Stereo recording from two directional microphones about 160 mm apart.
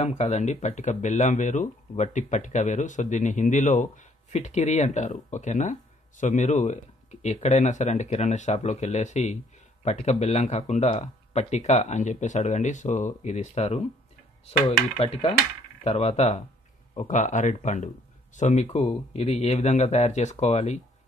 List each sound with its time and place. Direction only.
0.0 s speech: 45° left (ahead or behind)
15.0 s speech: 40° left (ahead or behind)